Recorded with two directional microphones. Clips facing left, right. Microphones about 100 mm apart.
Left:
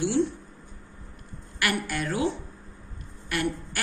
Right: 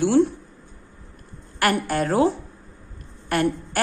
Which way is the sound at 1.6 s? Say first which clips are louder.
Right 7 dB; 40° right (ahead or behind).